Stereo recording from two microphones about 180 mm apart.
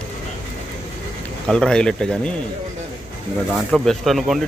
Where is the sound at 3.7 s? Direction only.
Centre (ahead or behind).